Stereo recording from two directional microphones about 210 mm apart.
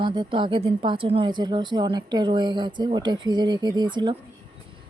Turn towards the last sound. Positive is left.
turn(degrees=-20)  # may be behind; listen again after turning